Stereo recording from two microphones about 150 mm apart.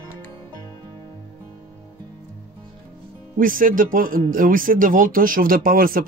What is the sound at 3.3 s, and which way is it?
Speech, 65° right (ahead or behind).